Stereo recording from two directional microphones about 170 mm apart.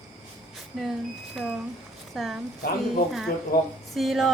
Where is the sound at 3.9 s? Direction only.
Centre (ahead or behind).